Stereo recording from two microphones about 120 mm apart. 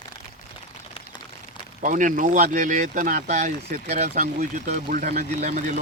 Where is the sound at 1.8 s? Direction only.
90° right.